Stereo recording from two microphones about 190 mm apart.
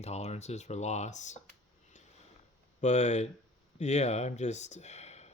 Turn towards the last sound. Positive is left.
turn(degrees=35)  # may be behind; listen again after turning